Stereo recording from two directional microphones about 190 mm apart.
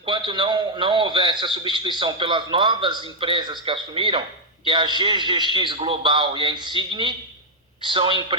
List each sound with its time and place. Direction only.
0.0 s a man's voice: 25° right (ahead or behind)